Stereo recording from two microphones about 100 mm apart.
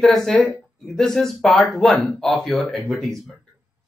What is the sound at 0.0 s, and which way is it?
Speech, centre (ahead or behind).